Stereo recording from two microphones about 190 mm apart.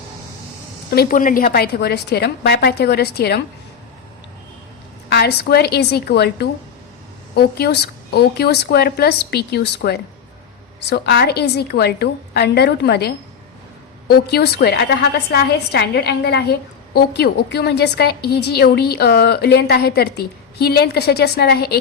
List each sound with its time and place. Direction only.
0.9 s a woman's voice: 50° left (ahead or behind)
5.0 s a woman's voice: 60° left (ahead or behind)